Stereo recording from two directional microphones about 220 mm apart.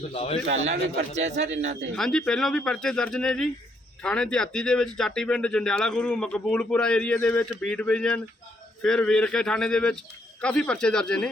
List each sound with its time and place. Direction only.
0.1 s a man's voice: 30° left (ahead or behind)
0.4 s a man's voice: 60° right (ahead or behind)
1.1 s a man's voice: 30° right (ahead or behind)
2.0 s a man's voice: centre (ahead or behind)